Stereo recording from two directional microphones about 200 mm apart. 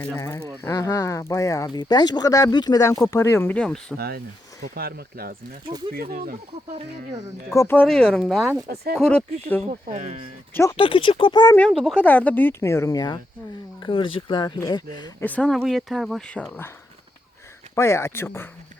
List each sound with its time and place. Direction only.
0.0 s speech: 15° left (ahead or behind)
3.9 s speech: 50° right (ahead or behind)
7.5 s speech: 10° left (ahead or behind)
9.6 s speech: 35° right (ahead or behind)
10.5 s speech: 15° left (ahead or behind)
10.8 s speech: 25° left (ahead or behind)
11.5 s speech: 5° left (ahead or behind); by 15.1 s 20° left (ahead or behind)
15.2 s speech: 5° left (ahead or behind)
17.7 s speech: 15° left (ahead or behind)